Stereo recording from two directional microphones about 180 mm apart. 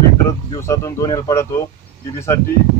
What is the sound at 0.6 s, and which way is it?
Speech, 15° left (ahead or behind).